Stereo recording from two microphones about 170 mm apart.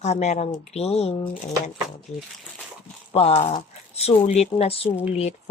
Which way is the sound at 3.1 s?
35° left (ahead or behind).